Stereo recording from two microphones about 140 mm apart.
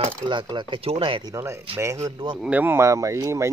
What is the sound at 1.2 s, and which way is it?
Speech, 25° right (ahead or behind).